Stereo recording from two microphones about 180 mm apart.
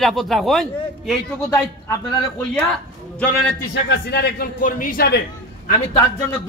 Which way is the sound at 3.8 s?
70° left (ahead or behind).